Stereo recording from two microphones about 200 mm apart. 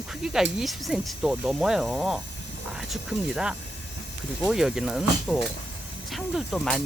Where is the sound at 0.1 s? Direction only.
5° right (ahead or behind).